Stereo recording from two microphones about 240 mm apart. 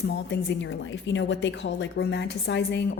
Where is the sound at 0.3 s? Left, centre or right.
Left.